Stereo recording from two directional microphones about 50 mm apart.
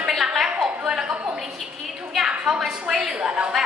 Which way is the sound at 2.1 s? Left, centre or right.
Centre.